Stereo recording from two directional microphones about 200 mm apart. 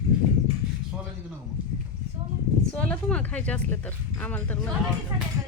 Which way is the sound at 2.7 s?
5° left (ahead or behind).